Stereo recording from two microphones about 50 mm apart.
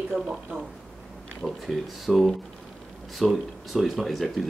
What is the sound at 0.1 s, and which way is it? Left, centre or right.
Speech, centre.